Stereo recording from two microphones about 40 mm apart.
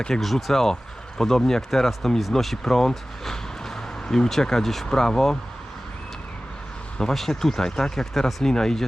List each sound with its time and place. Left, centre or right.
0.1 s speech: centre
7.0 s speech: centre